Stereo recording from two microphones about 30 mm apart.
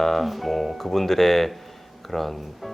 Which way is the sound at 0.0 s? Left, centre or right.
Centre.